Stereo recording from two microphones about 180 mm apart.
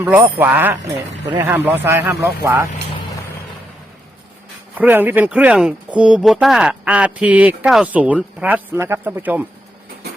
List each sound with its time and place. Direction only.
0.0 s speech: 10° right (ahead or behind)
4.7 s speech: 10° right (ahead or behind)